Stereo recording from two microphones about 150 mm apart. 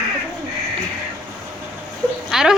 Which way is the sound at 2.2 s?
5° right (ahead or behind).